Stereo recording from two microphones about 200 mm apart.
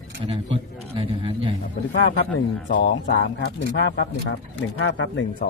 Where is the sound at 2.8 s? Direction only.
60° left (ahead or behind).